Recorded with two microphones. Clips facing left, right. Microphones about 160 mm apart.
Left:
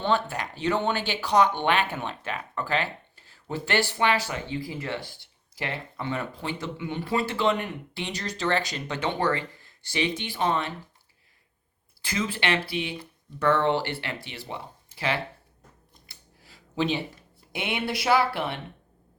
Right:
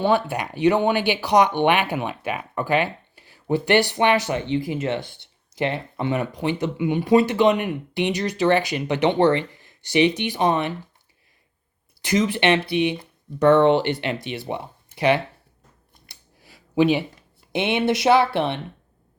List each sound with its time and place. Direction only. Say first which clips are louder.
0.0 s speech: right 5 dB; 10° right (ahead or behind)
12.0 s speech: right 8 dB; 20° right (ahead or behind)
16.0 s a sound: right 5 dB; 15° right (ahead or behind)
17.5 s speech: right 9 dB; 25° right (ahead or behind)